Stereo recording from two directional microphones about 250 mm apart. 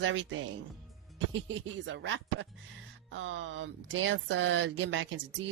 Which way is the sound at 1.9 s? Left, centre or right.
Right.